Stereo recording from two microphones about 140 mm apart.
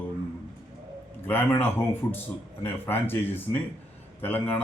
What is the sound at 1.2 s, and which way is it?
A man's voice, 15° left (ahead or behind).